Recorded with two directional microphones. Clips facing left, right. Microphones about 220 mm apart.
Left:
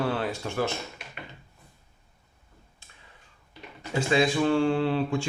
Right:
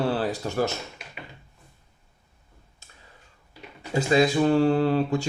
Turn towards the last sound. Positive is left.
turn(degrees=-40)  # may be behind; listen again after turning